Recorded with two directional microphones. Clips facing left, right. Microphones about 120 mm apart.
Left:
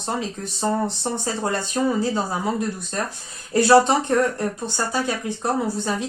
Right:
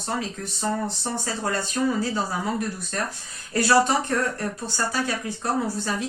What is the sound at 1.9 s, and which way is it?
Speech, 25° left (ahead or behind).